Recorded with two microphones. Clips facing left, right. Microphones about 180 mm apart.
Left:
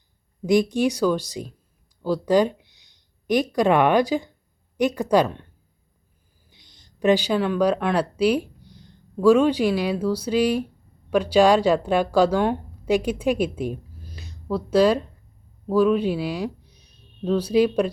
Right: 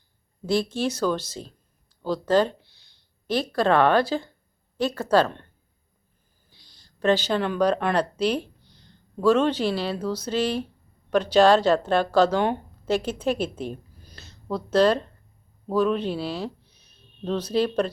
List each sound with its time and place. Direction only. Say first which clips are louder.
0.4 s a woman's voice: left 5 dB; 15° left (ahead or behind)
6.5 s a woman's voice: left 3 dB; 20° left (ahead or behind); by 12.6 s centre (ahead or behind)
12.8 s a woman's voice: left 3 dB; 10° left (ahead or behind)